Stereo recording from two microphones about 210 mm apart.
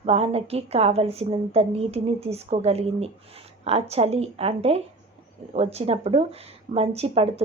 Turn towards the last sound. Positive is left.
turn(degrees=-30)  # may be behind; listen again after turning